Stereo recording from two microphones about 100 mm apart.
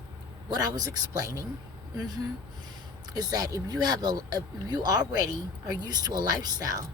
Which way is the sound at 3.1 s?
40° right (ahead or behind).